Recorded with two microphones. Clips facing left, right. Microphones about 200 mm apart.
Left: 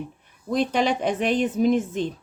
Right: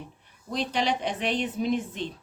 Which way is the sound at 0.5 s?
50° left (ahead or behind).